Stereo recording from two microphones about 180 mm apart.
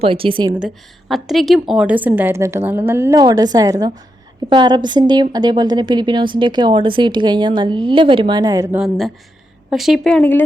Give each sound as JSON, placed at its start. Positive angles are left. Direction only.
{"t": 0.0, "sound": "a woman's voice", "side_deg": -30}
{"t": 0.6, "sound": "a woman's voice", "side_deg": 0}
{"t": 8.7, "sound": "a woman's voice", "side_deg": 0}